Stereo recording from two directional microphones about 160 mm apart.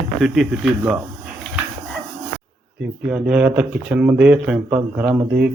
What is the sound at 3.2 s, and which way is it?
A man's voice, 10° right (ahead or behind).